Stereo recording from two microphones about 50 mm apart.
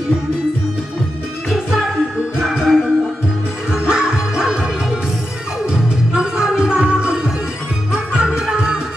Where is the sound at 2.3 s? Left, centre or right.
Centre.